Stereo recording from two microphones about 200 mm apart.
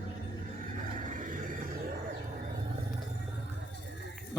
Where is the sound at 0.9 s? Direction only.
40° right (ahead or behind).